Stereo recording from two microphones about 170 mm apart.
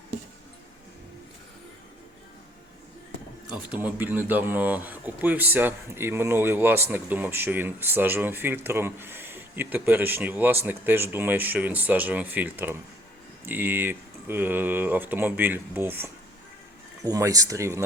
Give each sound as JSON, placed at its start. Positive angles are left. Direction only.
{"t": 3.5, "sound": "speech", "side_deg": -10}